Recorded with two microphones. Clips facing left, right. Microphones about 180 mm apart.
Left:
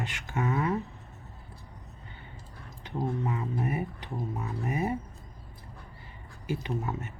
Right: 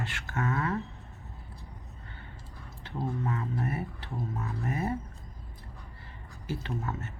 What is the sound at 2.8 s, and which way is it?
Speech, 15° left (ahead or behind).